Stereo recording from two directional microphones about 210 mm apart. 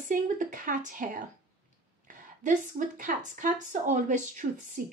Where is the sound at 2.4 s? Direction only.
40° right (ahead or behind).